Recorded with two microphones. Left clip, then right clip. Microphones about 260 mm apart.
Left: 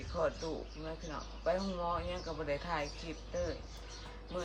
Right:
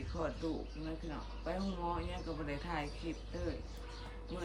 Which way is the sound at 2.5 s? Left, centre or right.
Centre.